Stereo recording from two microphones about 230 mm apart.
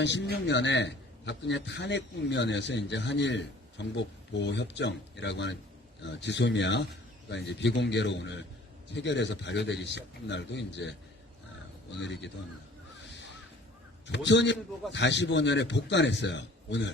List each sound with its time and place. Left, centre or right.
0.0 s a man's voice: left
11.9 s a man's voice: left
14.1 s a man's voice: left